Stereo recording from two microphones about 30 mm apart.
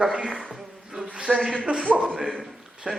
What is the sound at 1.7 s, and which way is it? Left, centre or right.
Speech, right.